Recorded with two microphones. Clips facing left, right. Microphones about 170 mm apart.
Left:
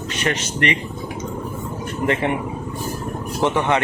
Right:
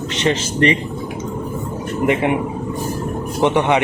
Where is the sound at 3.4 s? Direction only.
20° right (ahead or behind).